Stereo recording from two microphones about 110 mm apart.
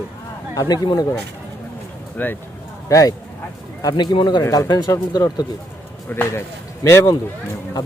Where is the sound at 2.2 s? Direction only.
15° left (ahead or behind).